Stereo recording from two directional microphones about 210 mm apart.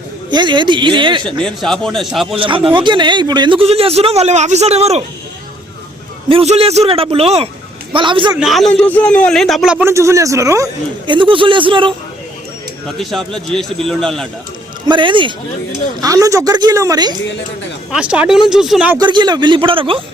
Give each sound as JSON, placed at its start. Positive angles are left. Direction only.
{"t": 0.3, "sound": "speech", "side_deg": -20}
{"t": 1.4, "sound": "a man's voice", "side_deg": 5}
{"t": 2.3, "sound": "speech", "side_deg": -25}
{"t": 6.2, "sound": "speech", "side_deg": -30}
{"t": 8.4, "sound": "a man's voice", "side_deg": 0}
{"t": 13.0, "sound": "a man's voice", "side_deg": 0}
{"t": 14.8, "sound": "a man's voice", "side_deg": -25}
{"t": 17.9, "sound": "a man's voice", "side_deg": -5}
{"t": 18.9, "sound": "speech", "side_deg": -20}